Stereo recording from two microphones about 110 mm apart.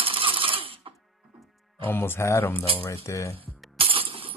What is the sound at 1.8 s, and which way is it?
Speech, 20° left (ahead or behind).